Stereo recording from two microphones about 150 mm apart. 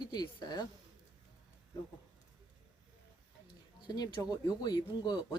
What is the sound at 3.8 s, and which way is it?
Speech, 25° left (ahead or behind).